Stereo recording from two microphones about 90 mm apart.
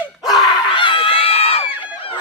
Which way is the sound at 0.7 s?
70° left (ahead or behind).